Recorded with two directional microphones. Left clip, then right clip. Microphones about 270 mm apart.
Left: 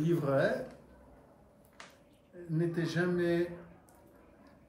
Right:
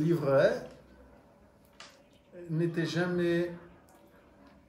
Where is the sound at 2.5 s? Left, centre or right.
Centre.